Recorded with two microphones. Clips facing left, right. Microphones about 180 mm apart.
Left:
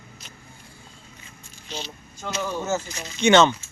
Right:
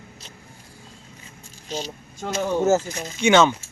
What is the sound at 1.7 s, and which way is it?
Speech, 40° right (ahead or behind).